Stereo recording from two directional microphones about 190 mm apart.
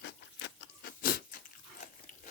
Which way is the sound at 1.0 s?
50° left (ahead or behind).